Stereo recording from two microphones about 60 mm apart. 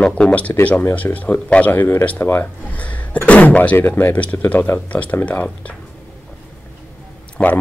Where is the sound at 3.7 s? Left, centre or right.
Left.